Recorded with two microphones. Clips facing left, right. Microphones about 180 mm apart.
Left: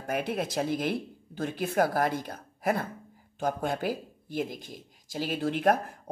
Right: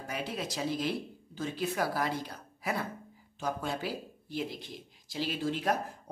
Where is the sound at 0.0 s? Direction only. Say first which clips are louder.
Left 6 dB; 55° left (ahead or behind).